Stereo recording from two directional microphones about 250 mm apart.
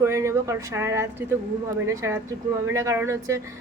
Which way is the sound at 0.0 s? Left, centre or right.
Centre.